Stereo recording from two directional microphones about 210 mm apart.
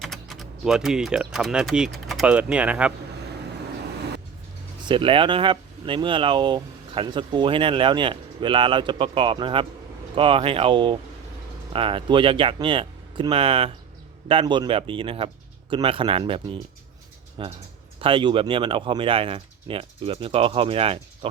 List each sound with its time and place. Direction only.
0.0 s speech: centre (ahead or behind)
4.9 s speech: 25° right (ahead or behind)